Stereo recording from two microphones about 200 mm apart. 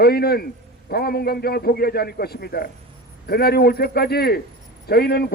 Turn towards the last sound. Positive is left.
turn(degrees=50)  # may be behind; listen again after turning